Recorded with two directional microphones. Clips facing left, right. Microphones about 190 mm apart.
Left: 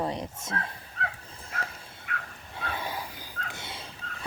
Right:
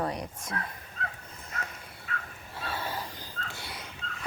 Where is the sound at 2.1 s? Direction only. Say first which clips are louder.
Left 1 dB; 65° left (ahead or behind).